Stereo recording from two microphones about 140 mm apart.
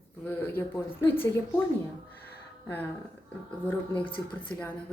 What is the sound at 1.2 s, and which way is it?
Speech, 15° left (ahead or behind).